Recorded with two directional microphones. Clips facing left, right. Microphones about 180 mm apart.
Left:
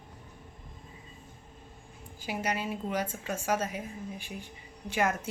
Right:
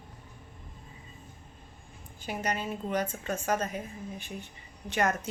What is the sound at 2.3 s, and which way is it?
A woman's voice, 10° left (ahead or behind).